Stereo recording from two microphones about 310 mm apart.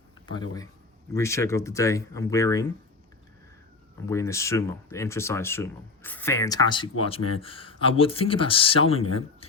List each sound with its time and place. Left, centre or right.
1.1 s speech: centre
4.0 s speech: centre